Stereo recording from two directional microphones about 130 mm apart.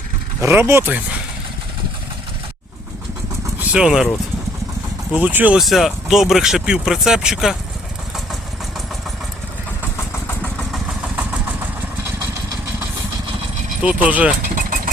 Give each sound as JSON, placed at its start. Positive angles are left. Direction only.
{"t": 0.4, "sound": "speech", "side_deg": -20}
{"t": 3.6, "sound": "speech", "side_deg": -5}
{"t": 5.1, "sound": "speech", "side_deg": -10}
{"t": 5.5, "sound": "speech", "side_deg": 0}
{"t": 10.0, "sound": "vehicle", "side_deg": 15}
{"t": 10.7, "sound": "vehicle", "side_deg": 0}
{"t": 13.8, "sound": "speech", "side_deg": -10}